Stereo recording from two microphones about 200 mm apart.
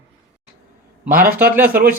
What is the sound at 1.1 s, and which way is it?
Speech, 45° right (ahead or behind).